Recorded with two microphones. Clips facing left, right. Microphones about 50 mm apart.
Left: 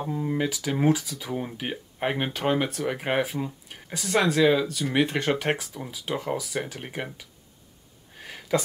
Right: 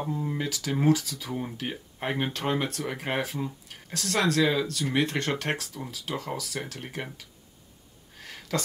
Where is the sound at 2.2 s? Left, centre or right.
Centre.